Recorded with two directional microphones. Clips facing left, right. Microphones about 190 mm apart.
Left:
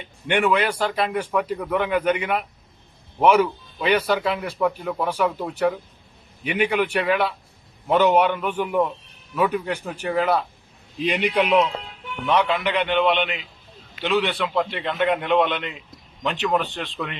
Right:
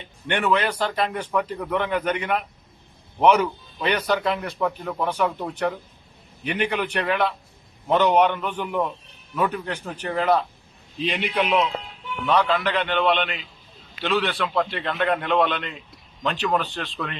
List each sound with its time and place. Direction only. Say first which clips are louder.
0.3 s a man's voice: left 2 dB; 10° left (ahead or behind)
12.3 s a man's voice: even; 20° left (ahead or behind)
14.4 s a man's voice: left 1 dB; 20° left (ahead or behind)